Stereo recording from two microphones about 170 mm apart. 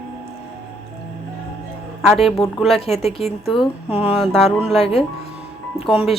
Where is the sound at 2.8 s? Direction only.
40° left (ahead or behind).